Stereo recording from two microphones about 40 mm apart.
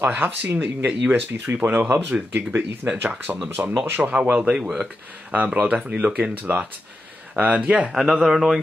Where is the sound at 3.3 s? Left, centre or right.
Right.